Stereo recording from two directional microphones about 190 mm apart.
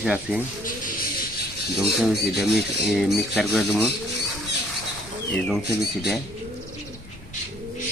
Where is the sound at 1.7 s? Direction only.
Centre (ahead or behind).